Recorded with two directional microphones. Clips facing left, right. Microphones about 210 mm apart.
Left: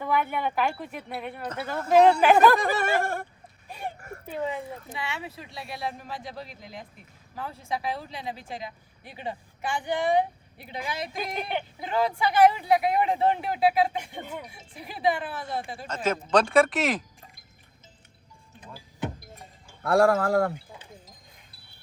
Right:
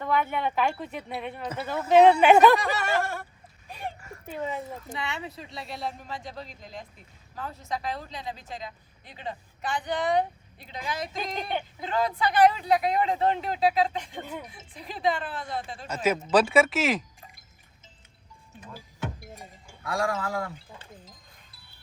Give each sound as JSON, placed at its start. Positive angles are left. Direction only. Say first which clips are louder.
{"t": 0.0, "sound": "a woman's voice", "louder": "even", "side_deg": 5}
{"t": 2.6, "sound": "a sound", "louder": "left 2 dB", "side_deg": 55}
{"t": 4.5, "sound": "a woman's voice", "louder": "even", "side_deg": 5}
{"t": 16.0, "sound": "a woman's voice", "louder": "right 1 dB", "side_deg": -5}
{"t": 19.8, "sound": "speech", "louder": "left 8 dB", "side_deg": 60}